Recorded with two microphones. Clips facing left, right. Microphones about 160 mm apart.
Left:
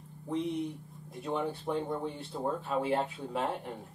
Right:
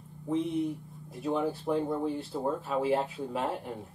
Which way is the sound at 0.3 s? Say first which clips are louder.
Right 4 dB; centre (ahead or behind).